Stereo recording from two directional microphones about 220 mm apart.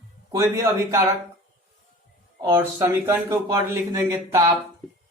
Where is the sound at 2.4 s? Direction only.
15° right (ahead or behind).